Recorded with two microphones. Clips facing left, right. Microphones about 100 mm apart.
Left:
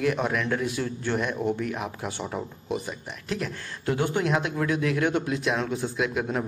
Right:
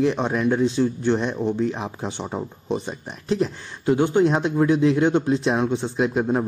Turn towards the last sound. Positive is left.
turn(degrees=-25)  # may be behind; listen again after turning